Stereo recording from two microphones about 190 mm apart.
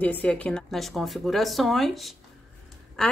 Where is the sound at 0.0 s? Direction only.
10° left (ahead or behind).